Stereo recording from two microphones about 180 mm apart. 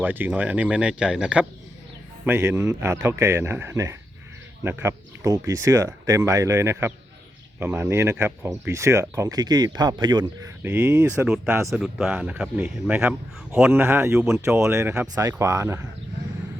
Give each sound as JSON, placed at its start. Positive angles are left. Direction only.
{"t": 0.0, "sound": "speech", "side_deg": -10}
{"t": 10.6, "sound": "speech", "side_deg": -10}
{"t": 11.7, "sound": "speech", "side_deg": -5}